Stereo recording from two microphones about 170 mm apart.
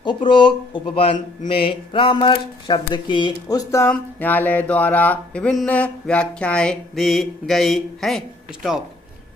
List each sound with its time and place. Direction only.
0.0 s speech: 30° left (ahead or behind); by 8.2 s centre (ahead or behind)